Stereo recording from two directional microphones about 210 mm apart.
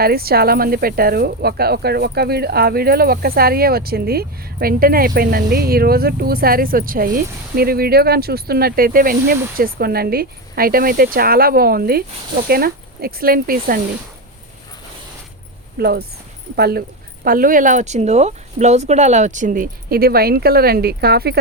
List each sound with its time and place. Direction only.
0.0 s speech: 45° right (ahead or behind)
15.8 s speech: 50° right (ahead or behind)